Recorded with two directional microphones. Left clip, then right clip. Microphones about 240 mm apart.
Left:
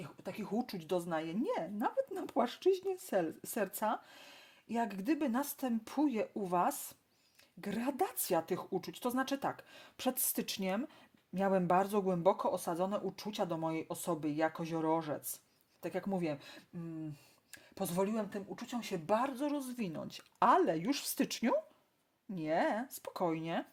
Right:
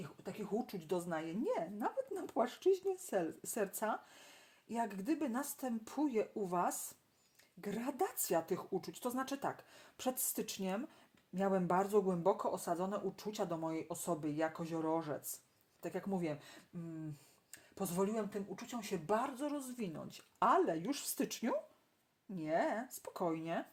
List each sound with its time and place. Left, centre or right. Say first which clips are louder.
0.0 s a woman's voice: left 2 dB; left
17.5 s a woman's voice: left 3 dB; left